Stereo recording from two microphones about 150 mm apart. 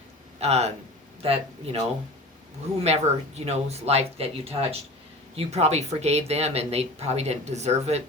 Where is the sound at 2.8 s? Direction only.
45° right (ahead or behind).